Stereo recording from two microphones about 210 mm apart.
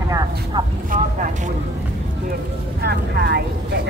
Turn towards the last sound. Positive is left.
turn(degrees=-50)  # may be behind; listen again after turning